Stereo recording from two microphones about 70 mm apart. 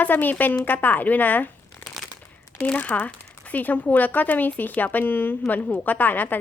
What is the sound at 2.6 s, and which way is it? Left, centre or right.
Speech, left.